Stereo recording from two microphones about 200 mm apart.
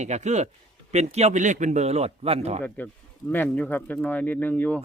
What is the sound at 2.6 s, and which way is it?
Speech, 10° left (ahead or behind).